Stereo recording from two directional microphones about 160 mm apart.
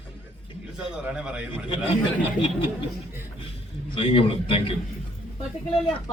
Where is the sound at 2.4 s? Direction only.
30° left (ahead or behind).